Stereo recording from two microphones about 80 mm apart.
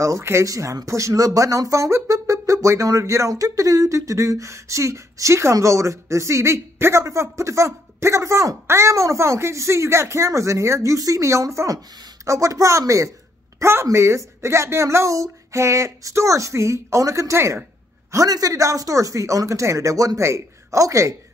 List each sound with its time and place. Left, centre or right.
0.0 s speech: right
13.6 s speech: right
18.1 s speech: right